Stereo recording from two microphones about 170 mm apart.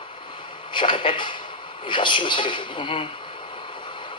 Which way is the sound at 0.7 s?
30° left (ahead or behind).